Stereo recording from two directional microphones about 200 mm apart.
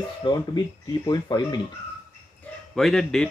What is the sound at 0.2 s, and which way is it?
Speech, 25° left (ahead or behind).